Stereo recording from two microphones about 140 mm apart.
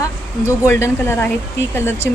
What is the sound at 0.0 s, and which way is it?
A woman's voice, 20° left (ahead or behind).